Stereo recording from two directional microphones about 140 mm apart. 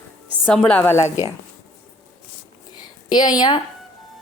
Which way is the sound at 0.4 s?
10° left (ahead or behind).